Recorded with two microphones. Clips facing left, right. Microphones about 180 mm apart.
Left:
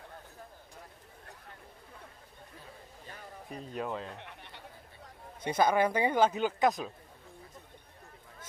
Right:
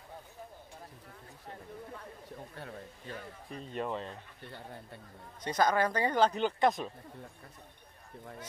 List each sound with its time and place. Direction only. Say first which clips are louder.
2.5 s a sound: right 6 dB; 60° right (ahead or behind)
3.4 s speech: even; 5° left (ahead or behind)
4.2 s a man's voice: right 1 dB; 70° left (ahead or behind)
5.4 s speech: left 2 dB; 10° left (ahead or behind)